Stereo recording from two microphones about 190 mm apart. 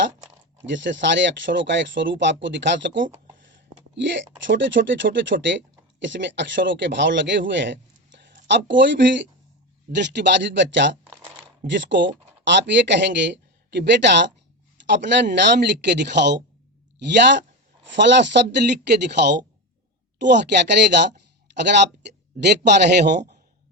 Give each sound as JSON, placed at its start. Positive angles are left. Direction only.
{"t": 0.6, "sound": "speech", "side_deg": -75}